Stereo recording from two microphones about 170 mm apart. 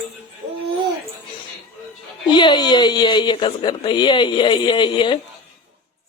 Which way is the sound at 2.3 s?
25° left (ahead or behind).